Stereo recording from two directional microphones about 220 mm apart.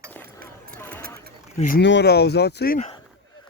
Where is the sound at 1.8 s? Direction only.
50° left (ahead or behind).